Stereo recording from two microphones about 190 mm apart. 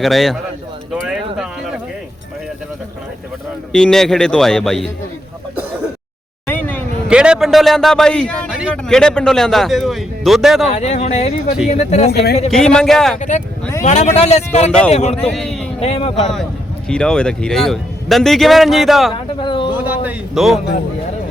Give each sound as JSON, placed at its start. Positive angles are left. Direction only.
{"t": 0.0, "sound": "speech", "side_deg": 0}
{"t": 1.0, "sound": "a sound", "side_deg": -5}
{"t": 3.7, "sound": "speech", "side_deg": 5}
{"t": 6.5, "sound": "vehicle", "side_deg": 10}
{"t": 7.1, "sound": "speech", "side_deg": -5}
{"t": 10.7, "sound": "speech", "side_deg": 35}
{"t": 12.5, "sound": "speech", "side_deg": 5}
{"t": 13.1, "sound": "speech", "side_deg": 40}
{"t": 15.3, "sound": "speech", "side_deg": 0}
{"t": 15.8, "sound": "speech", "side_deg": 30}
{"t": 16.9, "sound": "speech", "side_deg": 5}
{"t": 19.4, "sound": "a sound", "side_deg": 25}
{"t": 19.7, "sound": "a sound", "side_deg": -10}